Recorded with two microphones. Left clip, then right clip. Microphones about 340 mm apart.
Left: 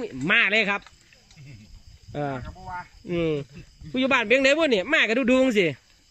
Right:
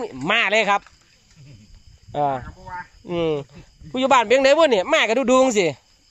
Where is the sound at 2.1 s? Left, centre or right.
Centre.